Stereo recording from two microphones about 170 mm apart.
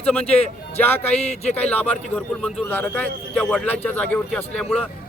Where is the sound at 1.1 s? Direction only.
40° left (ahead or behind).